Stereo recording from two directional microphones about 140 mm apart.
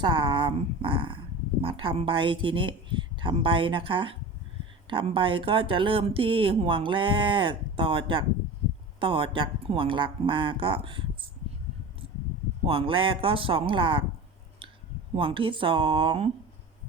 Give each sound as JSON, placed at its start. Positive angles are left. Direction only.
{"t": 0.0, "sound": "speech", "side_deg": -35}
{"t": 12.6, "sound": "speech", "side_deg": -40}
{"t": 15.1, "sound": "speech", "side_deg": -40}